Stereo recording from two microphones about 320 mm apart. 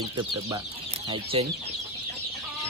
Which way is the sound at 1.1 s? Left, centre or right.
Centre.